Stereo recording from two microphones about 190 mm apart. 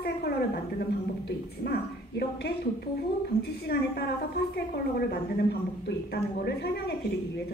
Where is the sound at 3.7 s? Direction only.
55° left (ahead or behind).